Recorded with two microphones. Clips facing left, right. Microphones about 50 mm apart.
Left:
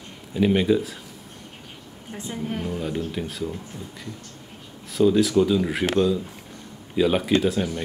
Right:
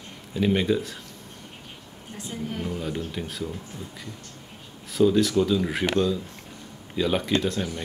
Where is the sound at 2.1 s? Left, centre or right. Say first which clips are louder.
Left 3 dB; left.